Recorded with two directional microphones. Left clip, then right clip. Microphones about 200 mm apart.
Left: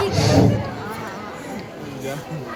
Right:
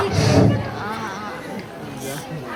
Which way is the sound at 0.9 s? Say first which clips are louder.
Right 3 dB; 35° right (ahead or behind).